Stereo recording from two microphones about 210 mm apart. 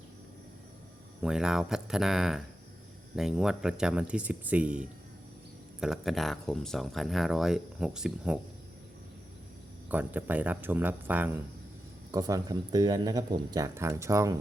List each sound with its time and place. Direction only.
1.2 s speech: 5° right (ahead or behind)
9.9 s speech: 10° right (ahead or behind)